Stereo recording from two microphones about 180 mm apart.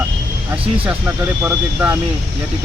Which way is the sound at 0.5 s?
10° right (ahead or behind).